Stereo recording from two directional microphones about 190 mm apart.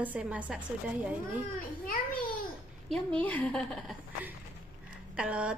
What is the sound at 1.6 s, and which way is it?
Children playing, 50° left (ahead or behind).